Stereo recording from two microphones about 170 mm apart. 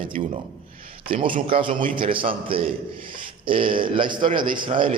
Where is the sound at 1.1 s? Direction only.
30° right (ahead or behind).